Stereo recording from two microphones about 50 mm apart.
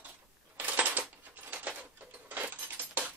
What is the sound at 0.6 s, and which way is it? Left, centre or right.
Coin, right.